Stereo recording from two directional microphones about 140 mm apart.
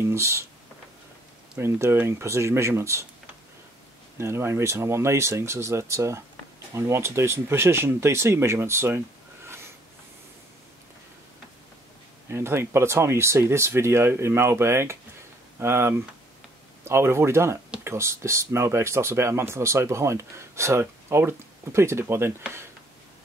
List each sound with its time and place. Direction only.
0.0 s speech: 20° right (ahead or behind)
1.6 s speech: 15° right (ahead or behind)
4.2 s speech: 20° right (ahead or behind)
12.3 s speech: 20° right (ahead or behind)